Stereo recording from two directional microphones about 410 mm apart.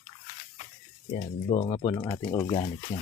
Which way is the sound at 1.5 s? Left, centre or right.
Centre.